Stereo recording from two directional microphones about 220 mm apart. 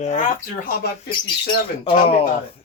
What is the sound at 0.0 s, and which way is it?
Speech, 35° left (ahead or behind).